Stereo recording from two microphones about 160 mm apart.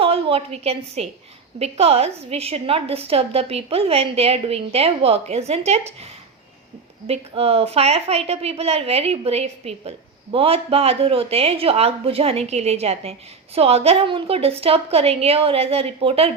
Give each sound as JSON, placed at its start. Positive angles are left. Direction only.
{"t": 0.0, "sound": "a woman's voice", "side_deg": -35}
{"t": 7.1, "sound": "speech", "side_deg": -40}